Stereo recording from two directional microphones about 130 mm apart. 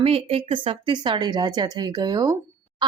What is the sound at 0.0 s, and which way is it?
Speech, 50° right (ahead or behind).